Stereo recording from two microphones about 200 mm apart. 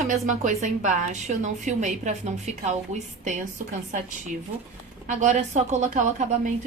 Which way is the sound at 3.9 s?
40° right (ahead or behind).